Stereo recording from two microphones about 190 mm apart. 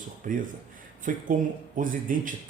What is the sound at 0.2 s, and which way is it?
Speech, 40° right (ahead or behind).